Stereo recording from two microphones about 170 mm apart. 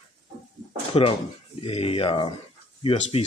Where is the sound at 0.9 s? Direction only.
30° left (ahead or behind).